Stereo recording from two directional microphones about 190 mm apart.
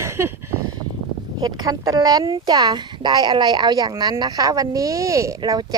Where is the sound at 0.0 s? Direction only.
15° right (ahead or behind).